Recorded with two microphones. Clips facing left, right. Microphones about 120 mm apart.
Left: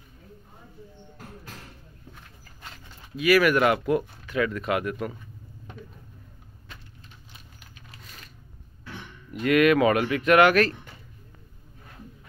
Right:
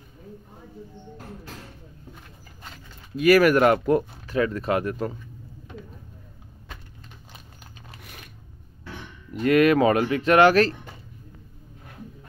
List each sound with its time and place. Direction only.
3.2 s speech: 45° right (ahead or behind)
8.0 s a sound: 65° right (ahead or behind)
9.3 s speech: 35° right (ahead or behind)